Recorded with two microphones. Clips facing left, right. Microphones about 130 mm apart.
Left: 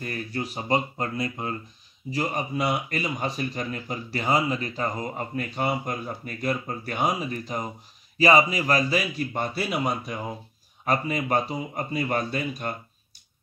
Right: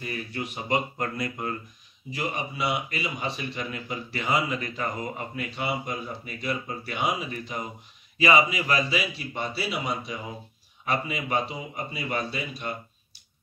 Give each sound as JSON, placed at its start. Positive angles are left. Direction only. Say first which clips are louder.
{"t": 0.0, "sound": "speech", "louder": "left 2 dB", "side_deg": 40}
{"t": 2.0, "sound": "speech", "louder": "left 3 dB", "side_deg": 40}